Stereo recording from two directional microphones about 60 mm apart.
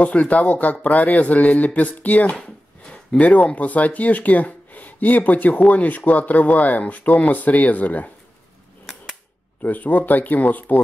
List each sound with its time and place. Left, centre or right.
0.0 s speech: left
9.6 s speech: left